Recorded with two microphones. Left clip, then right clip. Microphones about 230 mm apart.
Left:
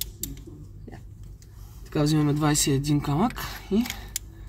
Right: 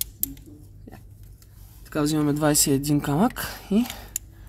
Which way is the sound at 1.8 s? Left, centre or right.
Right.